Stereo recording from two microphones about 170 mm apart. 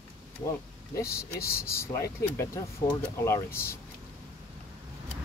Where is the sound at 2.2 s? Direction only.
15° left (ahead or behind).